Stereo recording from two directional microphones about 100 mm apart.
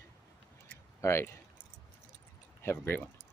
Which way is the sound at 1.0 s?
25° left (ahead or behind).